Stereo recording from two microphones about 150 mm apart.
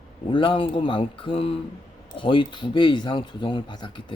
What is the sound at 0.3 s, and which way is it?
Speech, 35° left (ahead or behind).